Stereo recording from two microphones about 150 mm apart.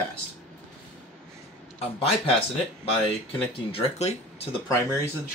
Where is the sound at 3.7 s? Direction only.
40° left (ahead or behind).